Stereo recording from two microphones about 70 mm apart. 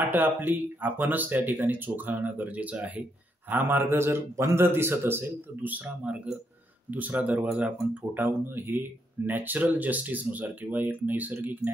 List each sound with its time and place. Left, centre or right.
0.0 s a man's voice: right